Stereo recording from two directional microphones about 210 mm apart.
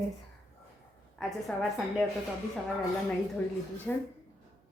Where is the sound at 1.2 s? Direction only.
Centre (ahead or behind).